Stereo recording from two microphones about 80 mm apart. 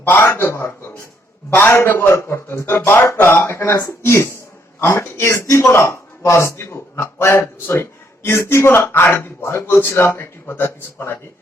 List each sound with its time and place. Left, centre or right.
0.0 s speech: left